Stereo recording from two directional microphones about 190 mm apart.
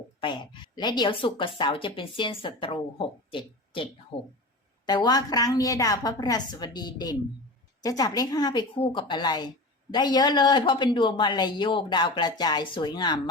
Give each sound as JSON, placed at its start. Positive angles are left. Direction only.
{"t": 0.2, "sound": "a woman's voice", "side_deg": 25}
{"t": 4.9, "sound": "a woman's voice", "side_deg": 20}